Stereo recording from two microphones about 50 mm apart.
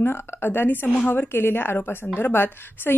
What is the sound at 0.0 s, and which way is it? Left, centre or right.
Speech, left.